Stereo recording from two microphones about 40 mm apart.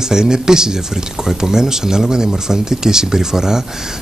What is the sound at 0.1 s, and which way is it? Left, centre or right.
Speech, centre.